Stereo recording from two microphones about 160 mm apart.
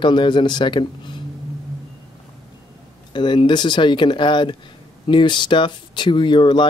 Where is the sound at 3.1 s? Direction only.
30° left (ahead or behind).